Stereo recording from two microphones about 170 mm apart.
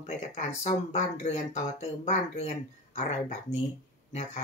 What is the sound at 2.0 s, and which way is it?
Speech, 40° left (ahead or behind).